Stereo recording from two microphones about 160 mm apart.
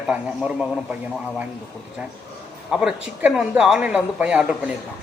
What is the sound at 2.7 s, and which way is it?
A man's voice, 5° right (ahead or behind).